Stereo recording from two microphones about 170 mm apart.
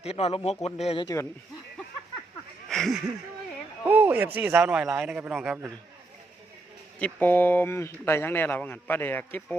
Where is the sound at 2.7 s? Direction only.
Centre (ahead or behind).